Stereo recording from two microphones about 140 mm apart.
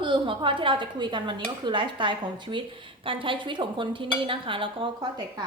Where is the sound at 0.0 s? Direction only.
35° right (ahead or behind).